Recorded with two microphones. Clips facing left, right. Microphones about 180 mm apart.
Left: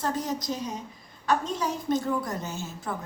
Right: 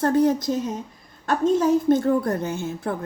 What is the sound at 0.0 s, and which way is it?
Speech, 60° right (ahead or behind).